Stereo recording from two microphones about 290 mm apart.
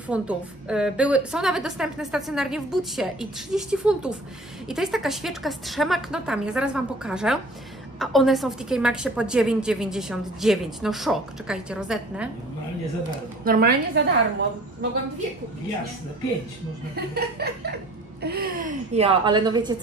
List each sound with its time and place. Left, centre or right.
0.1 s a woman's voice: centre
13.4 s chuckle: right
16.9 s chuckle: right
18.2 s a woman's voice: right; by 19.8 s centre